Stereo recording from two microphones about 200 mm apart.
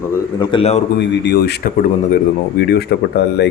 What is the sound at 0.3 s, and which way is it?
Speech, 25° left (ahead or behind).